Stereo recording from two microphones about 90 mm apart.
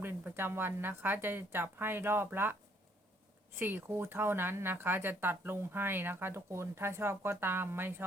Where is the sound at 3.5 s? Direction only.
20° right (ahead or behind).